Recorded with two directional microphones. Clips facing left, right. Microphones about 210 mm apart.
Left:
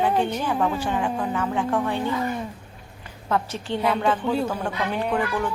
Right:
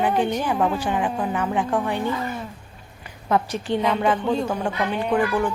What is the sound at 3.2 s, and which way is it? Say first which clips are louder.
Speech: right 3 dB; 15° right (ahead or behind).